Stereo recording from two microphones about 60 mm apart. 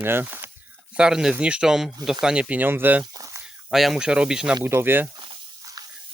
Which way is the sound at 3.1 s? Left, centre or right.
Right.